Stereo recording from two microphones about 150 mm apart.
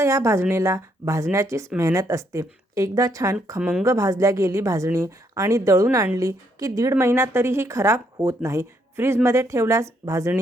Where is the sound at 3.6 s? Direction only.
5° right (ahead or behind).